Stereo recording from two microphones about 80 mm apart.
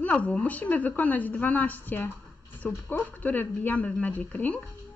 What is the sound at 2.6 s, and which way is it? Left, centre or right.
Speech, centre.